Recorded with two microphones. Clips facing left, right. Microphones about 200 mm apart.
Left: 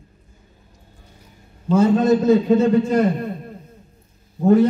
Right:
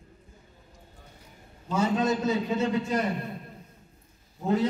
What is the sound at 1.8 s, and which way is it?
A man's voice, 55° left (ahead or behind).